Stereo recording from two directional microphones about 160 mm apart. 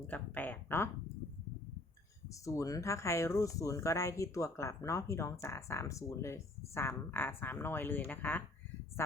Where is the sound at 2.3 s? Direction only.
20° left (ahead or behind).